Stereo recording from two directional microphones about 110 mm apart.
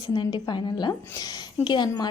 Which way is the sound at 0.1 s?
40° left (ahead or behind).